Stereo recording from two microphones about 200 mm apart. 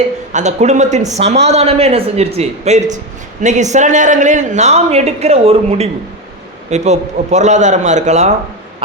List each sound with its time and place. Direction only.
0.3 s speech: 35° right (ahead or behind)